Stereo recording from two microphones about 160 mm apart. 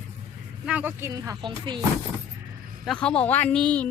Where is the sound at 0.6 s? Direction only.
10° right (ahead or behind).